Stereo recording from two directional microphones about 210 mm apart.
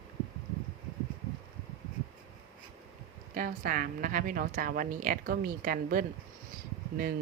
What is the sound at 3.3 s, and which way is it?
A woman's voice, 40° right (ahead or behind).